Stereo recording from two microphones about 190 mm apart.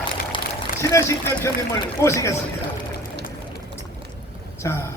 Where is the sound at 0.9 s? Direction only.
15° left (ahead or behind).